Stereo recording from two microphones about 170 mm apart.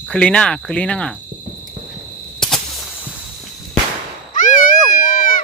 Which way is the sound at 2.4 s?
Centre (ahead or behind).